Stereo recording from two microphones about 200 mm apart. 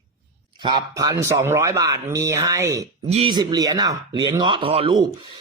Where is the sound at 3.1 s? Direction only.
25° right (ahead or behind).